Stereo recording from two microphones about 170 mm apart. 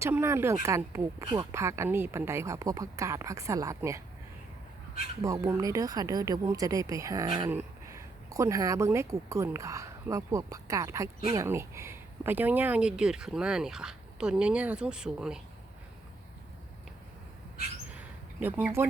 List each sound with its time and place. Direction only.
0.0 s speech: 15° right (ahead or behind)
5.2 s speech: 20° right (ahead or behind); by 15.4 s 5° right (ahead or behind)
17.9 s a sound: 10° right (ahead or behind)